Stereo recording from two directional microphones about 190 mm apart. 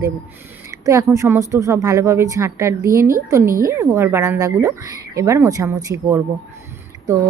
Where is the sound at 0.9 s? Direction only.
15° right (ahead or behind).